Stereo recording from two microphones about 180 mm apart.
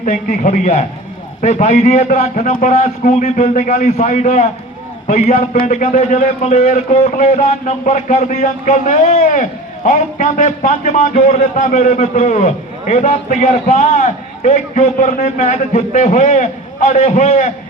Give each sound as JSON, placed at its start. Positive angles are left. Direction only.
{"t": 0.0, "sound": "a man's voice", "side_deg": 40}